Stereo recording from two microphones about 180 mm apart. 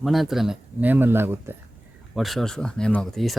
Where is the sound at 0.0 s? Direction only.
Centre (ahead or behind).